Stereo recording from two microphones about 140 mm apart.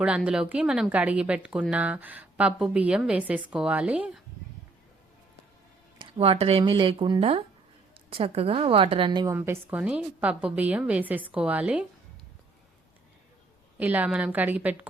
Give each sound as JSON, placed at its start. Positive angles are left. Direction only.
{"t": 0.3, "sound": "a woman's voice", "side_deg": -10}
{"t": 6.0, "sound": "speech", "side_deg": -40}
{"t": 9.3, "sound": "a woman's voice", "side_deg": -15}
{"t": 13.7, "sound": "a woman's voice", "side_deg": -10}